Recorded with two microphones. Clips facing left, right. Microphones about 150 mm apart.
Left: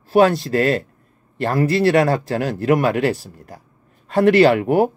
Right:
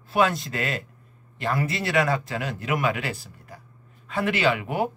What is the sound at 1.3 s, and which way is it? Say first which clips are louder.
Speech: left 9 dB; 50° left (ahead or behind).